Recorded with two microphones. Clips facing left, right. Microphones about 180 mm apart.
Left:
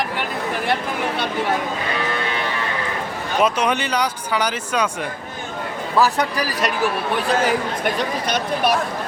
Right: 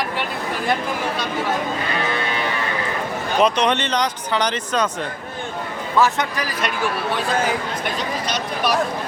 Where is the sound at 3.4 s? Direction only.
5° left (ahead or behind).